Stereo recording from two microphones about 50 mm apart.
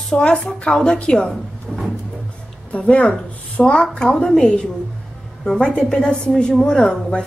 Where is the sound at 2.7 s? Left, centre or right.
Left.